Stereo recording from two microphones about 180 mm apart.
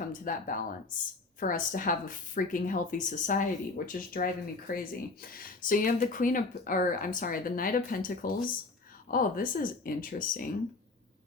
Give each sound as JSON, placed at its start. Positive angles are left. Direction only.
{"t": 0.1, "sound": "speech", "side_deg": 50}